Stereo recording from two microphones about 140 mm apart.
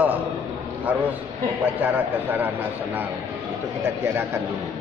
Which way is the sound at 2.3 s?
10° right (ahead or behind).